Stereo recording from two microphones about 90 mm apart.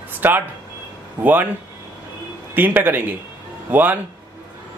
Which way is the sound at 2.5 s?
20° right (ahead or behind).